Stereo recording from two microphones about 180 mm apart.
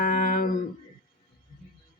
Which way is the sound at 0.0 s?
55° left (ahead or behind).